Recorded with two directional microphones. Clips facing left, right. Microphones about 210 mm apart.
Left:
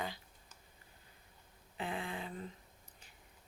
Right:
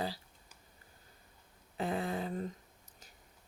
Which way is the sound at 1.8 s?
40° right (ahead or behind).